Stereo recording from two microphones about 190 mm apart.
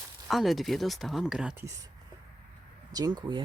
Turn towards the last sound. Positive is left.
turn(degrees=-25)  # may be behind; listen again after turning